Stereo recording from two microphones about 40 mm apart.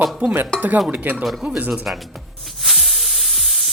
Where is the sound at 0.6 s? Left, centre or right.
Right.